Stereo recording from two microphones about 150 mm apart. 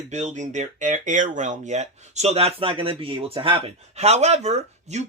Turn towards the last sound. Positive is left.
turn(degrees=-50)  # may be behind; listen again after turning